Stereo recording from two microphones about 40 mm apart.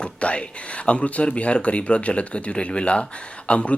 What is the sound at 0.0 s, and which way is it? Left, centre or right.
Speech, left.